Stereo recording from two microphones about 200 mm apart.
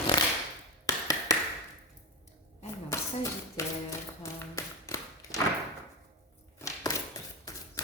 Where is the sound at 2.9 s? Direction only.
15° left (ahead or behind).